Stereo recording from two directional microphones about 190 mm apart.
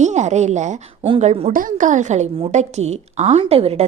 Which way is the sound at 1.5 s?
45° right (ahead or behind).